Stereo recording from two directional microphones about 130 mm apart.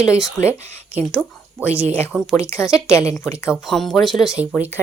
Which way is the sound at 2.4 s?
20° left (ahead or behind).